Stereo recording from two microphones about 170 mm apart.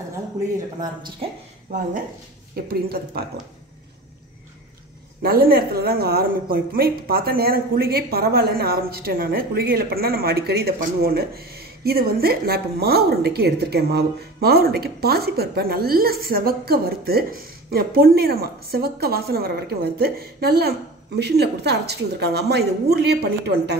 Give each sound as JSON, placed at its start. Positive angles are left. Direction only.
{"t": 2.5, "sound": "a woman's voice", "side_deg": -65}
{"t": 5.2, "sound": "a woman's voice", "side_deg": -60}